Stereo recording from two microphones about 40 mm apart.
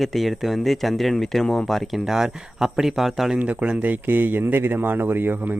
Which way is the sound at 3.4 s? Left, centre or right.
Right.